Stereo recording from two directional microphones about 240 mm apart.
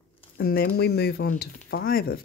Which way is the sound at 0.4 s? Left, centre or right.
Left.